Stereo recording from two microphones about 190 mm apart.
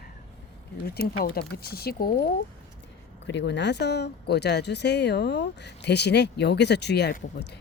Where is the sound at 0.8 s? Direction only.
55° left (ahead or behind).